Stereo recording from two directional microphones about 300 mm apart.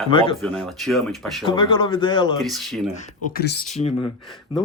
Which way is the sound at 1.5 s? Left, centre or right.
Centre.